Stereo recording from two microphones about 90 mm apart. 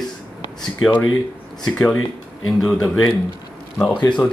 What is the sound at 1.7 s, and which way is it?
Speech, 15° left (ahead or behind).